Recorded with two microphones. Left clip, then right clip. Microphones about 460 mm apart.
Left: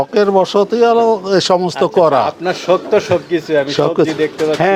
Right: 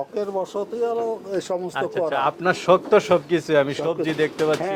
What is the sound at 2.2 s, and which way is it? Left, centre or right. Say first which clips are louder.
Speech: left 6 dB; right.